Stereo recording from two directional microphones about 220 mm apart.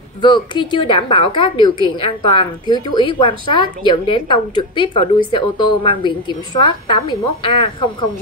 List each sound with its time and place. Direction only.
0.2 s a woman's voice: 20° left (ahead or behind)